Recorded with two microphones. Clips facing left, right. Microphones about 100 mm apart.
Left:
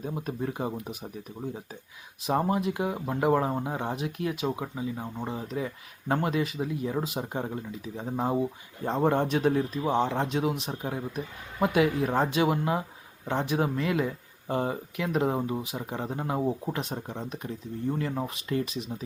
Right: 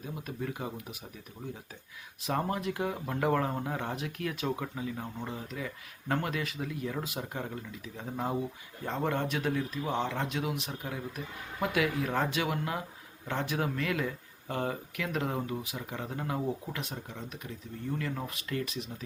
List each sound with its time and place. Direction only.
0.0 s speech: 30° left (ahead or behind)
2.2 s speech: 20° left (ahead or behind)